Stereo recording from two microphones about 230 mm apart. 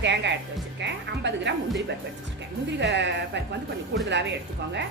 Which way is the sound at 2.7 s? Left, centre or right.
Right.